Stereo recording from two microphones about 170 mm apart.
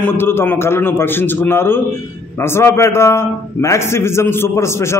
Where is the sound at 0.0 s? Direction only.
15° left (ahead or behind).